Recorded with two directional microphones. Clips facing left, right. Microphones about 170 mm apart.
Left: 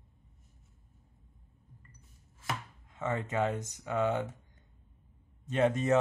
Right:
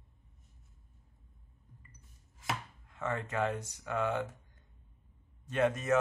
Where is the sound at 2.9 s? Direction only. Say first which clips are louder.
Left 2 dB; 20° left (ahead or behind).